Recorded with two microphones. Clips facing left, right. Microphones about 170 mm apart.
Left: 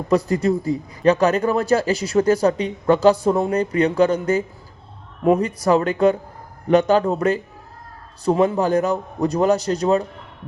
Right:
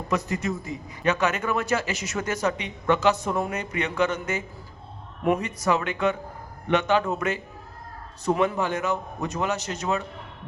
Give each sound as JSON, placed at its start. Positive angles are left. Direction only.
{"t": 0.1, "sound": "speech", "side_deg": 30}